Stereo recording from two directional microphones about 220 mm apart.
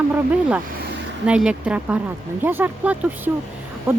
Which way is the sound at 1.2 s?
5° right (ahead or behind).